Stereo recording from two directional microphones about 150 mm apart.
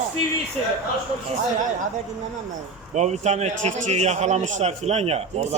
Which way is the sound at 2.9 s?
50° right (ahead or behind).